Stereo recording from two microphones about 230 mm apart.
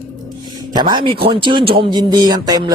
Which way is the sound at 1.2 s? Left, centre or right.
Right.